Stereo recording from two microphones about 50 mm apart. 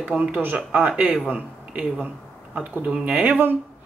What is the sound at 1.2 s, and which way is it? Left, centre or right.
Speech, right.